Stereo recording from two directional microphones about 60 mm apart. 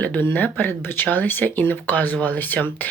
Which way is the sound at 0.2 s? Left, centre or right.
Left.